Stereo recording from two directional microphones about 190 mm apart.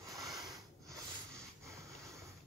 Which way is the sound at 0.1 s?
20° right (ahead or behind).